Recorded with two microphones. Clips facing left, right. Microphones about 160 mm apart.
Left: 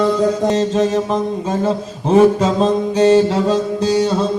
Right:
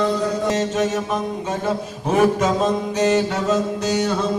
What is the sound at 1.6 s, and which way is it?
Mantra, 30° left (ahead or behind).